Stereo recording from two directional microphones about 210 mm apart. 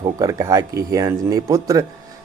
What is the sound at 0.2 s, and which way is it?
Speech, 15° right (ahead or behind).